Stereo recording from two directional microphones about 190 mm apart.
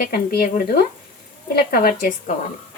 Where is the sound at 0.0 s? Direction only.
50° left (ahead or behind).